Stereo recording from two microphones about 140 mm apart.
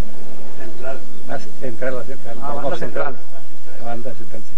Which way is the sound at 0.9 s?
30° right (ahead or behind).